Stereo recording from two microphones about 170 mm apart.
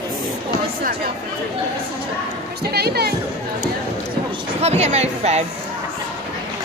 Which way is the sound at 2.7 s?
70° right (ahead or behind).